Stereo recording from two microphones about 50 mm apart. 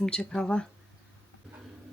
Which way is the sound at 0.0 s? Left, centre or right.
Centre.